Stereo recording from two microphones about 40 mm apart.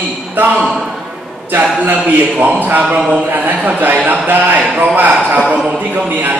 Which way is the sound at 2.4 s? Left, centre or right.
Right.